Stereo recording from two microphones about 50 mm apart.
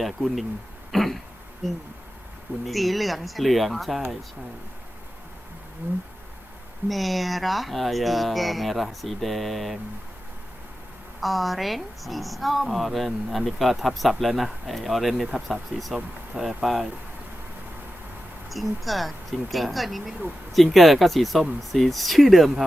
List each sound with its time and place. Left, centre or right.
0.0 s speech: centre
0.9 s cough: centre
2.6 s speech: centre
5.8 s a sound: right
6.8 s speech: centre
11.2 s speech: centre
18.4 s speech: centre